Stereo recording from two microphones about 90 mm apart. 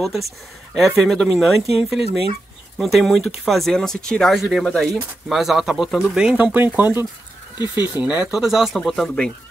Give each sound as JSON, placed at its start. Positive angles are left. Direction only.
{"t": 0.0, "sound": "speech", "side_deg": 0}
{"t": 5.3, "sound": "speech", "side_deg": 0}
{"t": 7.5, "sound": "speech", "side_deg": 50}
{"t": 8.0, "sound": "speech", "side_deg": -15}
{"t": 8.3, "sound": "speech", "side_deg": -5}